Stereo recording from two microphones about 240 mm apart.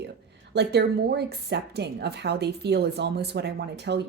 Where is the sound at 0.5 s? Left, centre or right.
Right.